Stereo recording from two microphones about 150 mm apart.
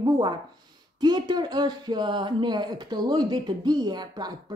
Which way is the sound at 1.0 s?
30° right (ahead or behind).